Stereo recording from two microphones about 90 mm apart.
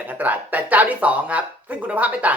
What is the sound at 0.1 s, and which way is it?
Speech, 20° right (ahead or behind).